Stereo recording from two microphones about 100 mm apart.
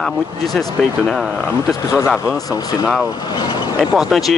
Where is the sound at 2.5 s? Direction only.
40° left (ahead or behind).